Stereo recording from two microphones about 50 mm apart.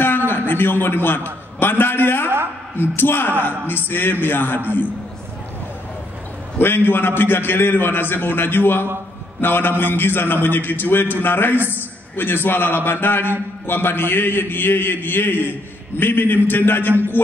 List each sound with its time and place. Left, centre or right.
0.3 s a man's voice: left
6.6 s a man's voice: left